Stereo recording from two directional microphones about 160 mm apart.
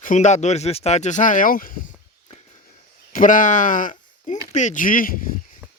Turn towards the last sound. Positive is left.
turn(degrees=60)  # may be behind; listen again after turning